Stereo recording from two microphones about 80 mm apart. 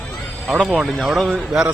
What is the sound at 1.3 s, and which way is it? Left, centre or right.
Speech, centre.